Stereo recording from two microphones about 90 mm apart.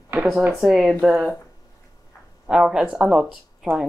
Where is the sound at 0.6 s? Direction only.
5° right (ahead or behind).